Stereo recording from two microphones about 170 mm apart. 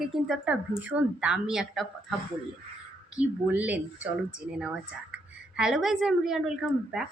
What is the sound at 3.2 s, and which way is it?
A woman's voice, 10° right (ahead or behind).